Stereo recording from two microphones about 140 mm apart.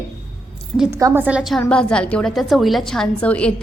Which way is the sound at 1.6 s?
10° left (ahead or behind).